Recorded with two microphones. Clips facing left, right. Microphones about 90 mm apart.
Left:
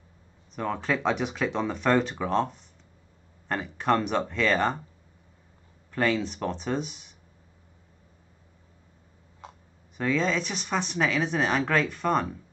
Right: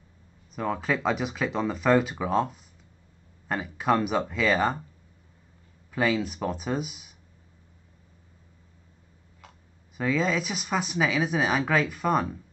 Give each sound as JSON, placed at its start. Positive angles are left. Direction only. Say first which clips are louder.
{"t": 0.6, "sound": "speech", "louder": "right 1 dB", "side_deg": -5}
{"t": 5.9, "sound": "speech", "louder": "even", "side_deg": -5}
{"t": 9.4, "sound": "tick", "louder": "left 6 dB", "side_deg": 25}
{"t": 9.9, "sound": "speech", "louder": "even", "side_deg": -5}